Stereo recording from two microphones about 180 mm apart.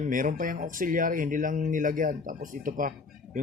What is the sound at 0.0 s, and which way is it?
Speech, 45° right (ahead or behind).